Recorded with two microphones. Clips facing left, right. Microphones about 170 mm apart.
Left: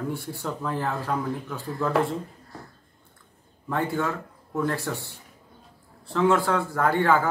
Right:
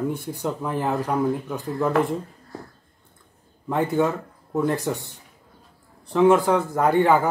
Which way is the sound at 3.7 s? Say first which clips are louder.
Right 5 dB; 20° right (ahead or behind).